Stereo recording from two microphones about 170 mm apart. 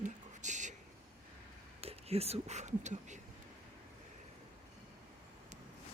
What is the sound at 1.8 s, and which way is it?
Speech, 35° right (ahead or behind).